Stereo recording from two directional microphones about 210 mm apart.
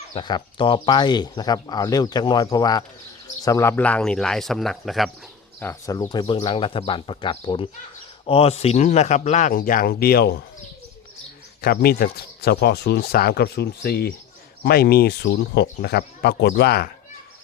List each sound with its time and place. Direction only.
0.1 s speech: 20° left (ahead or behind); by 5.1 s centre (ahead or behind)
5.5 s speech: 10° left (ahead or behind); by 10.4 s 45° left (ahead or behind)
11.6 s speech: 50° left (ahead or behind)